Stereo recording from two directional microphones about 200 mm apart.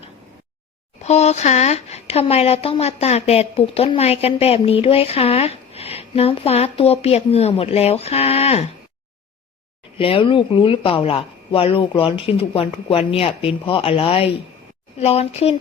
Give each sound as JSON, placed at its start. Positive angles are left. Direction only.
{"t": 1.0, "sound": "speech", "side_deg": 35}
{"t": 10.0, "sound": "speech", "side_deg": 25}